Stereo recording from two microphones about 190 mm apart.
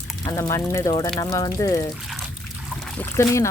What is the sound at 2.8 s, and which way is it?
Speech, 5° left (ahead or behind).